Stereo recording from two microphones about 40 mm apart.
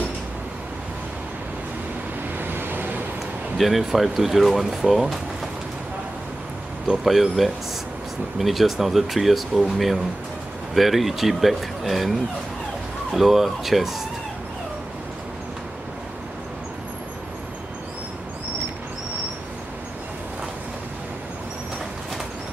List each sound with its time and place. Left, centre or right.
2.3 s vehicle: right
3.5 s speech: centre
6.9 s speech: centre